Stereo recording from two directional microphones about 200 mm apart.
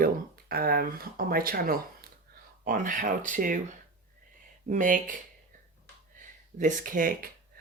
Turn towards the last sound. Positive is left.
turn(degrees=-40)  # may be behind; listen again after turning